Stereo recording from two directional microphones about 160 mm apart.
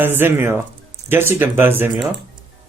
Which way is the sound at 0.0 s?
15° right (ahead or behind).